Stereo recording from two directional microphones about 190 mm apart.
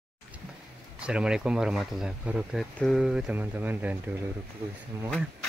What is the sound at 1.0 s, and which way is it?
Speech, 5° right (ahead or behind).